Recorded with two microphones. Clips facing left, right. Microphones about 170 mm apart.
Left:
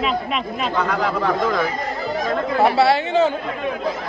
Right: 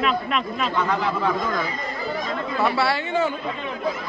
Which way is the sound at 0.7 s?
85° left.